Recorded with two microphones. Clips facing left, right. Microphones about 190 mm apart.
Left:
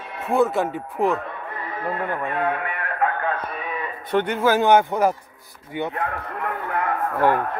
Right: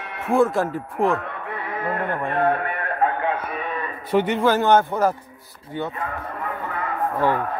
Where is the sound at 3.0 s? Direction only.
20° right (ahead or behind).